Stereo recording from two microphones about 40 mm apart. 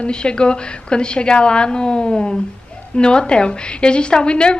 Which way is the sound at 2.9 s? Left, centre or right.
Left.